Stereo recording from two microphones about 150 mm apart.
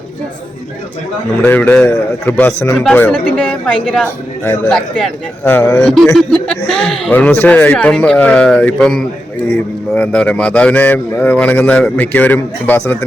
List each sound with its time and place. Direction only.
1.4 s a man's voice: 10° left (ahead or behind)
5.5 s a man's voice: 15° left (ahead or behind)
5.8 s a man's voice: centre (ahead or behind)